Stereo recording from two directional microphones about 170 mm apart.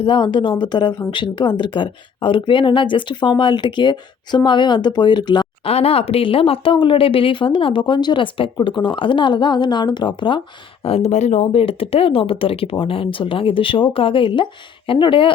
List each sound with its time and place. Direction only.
0.0 s speech: 30° left (ahead or behind)